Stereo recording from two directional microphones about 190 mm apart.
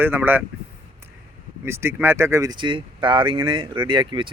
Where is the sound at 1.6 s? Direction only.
15° right (ahead or behind).